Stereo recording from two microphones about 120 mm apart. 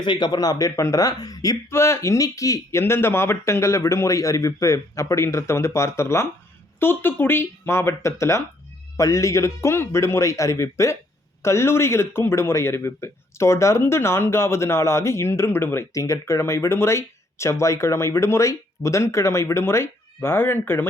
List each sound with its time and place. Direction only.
0.0 s a man's voice: 40° left (ahead or behind); by 20.8 s 20° left (ahead or behind)